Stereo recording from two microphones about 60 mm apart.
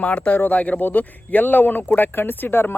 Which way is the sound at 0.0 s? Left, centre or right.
Centre.